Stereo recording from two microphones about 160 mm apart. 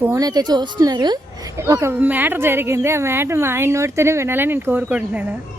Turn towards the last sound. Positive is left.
turn(degrees=-10)  # may be behind; listen again after turning